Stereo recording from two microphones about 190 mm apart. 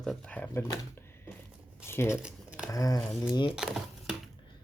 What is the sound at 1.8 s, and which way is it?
Speech, 15° left (ahead or behind).